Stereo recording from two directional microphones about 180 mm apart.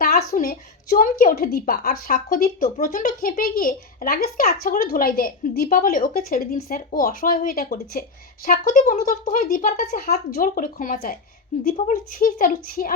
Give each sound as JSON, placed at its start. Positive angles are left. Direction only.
{"t": 0.0, "sound": "a woman's voice", "side_deg": 60}